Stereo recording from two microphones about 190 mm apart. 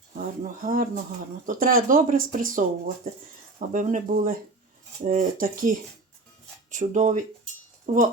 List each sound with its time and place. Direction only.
0.2 s speech: 45° right (ahead or behind)